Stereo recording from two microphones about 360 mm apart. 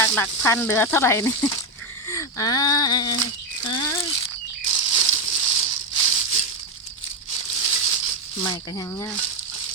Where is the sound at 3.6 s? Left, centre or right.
Centre.